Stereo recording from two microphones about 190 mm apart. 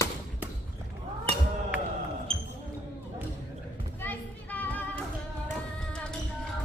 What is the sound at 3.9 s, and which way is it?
Music, 10° left (ahead or behind).